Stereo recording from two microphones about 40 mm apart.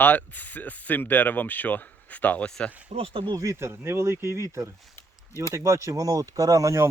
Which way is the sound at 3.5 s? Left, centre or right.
Right.